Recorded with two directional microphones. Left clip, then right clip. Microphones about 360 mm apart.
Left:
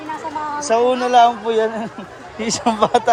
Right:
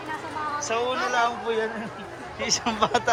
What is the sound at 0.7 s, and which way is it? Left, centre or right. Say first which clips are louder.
Speech: left 12 dB; left.